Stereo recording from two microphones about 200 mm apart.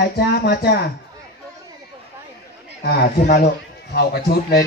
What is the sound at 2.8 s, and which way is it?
Speech, 55° left (ahead or behind).